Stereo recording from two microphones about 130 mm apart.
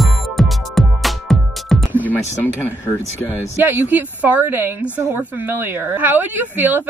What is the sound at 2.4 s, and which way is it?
Speech, 15° left (ahead or behind).